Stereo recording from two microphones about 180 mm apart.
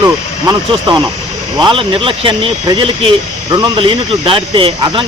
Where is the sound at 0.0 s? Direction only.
20° right (ahead or behind).